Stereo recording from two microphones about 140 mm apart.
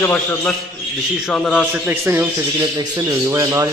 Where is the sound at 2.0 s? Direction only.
15° right (ahead or behind).